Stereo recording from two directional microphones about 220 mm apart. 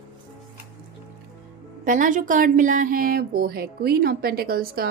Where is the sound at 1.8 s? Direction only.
35° right (ahead or behind).